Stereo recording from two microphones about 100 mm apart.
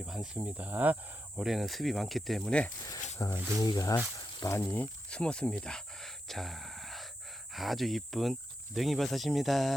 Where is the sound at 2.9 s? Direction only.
35° left (ahead or behind).